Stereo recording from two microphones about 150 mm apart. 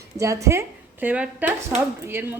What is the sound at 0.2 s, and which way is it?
A woman's voice, 20° right (ahead or behind).